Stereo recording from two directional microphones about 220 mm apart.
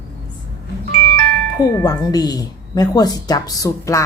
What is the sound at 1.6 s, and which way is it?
A woman's voice, 15° left (ahead or behind).